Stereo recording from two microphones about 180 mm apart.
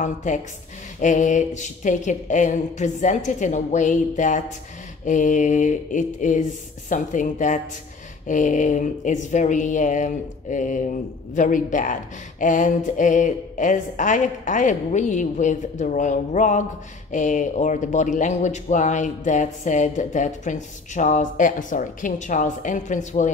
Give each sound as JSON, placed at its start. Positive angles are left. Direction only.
{"t": 0.0, "sound": "a woman's voice", "side_deg": 40}